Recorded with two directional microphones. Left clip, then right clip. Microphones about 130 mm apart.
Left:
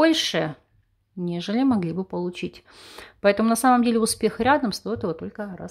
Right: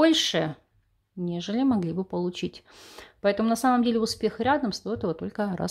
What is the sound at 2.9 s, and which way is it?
Speech, 10° left (ahead or behind).